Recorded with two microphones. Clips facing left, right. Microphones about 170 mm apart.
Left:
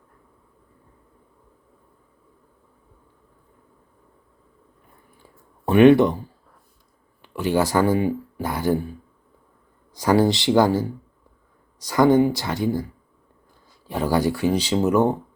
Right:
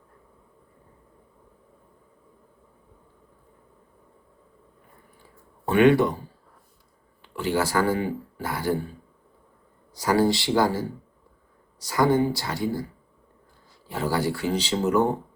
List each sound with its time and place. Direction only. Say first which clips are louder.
5.6 s speech: left 5 dB; 20° left (ahead or behind)
7.2 s speech: left 4 dB; 15° left (ahead or behind)
9.9 s speech: left 3 dB; 20° left (ahead or behind)
13.8 s speech: left 4 dB; 15° left (ahead or behind)